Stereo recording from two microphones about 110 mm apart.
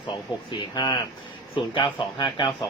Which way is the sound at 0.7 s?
40° left (ahead or behind).